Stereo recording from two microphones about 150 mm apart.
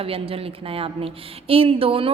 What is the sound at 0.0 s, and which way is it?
A woman's voice, 40° right (ahead or behind).